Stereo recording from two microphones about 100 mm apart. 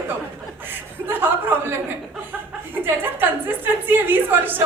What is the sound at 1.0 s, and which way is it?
Speech, 20° right (ahead or behind).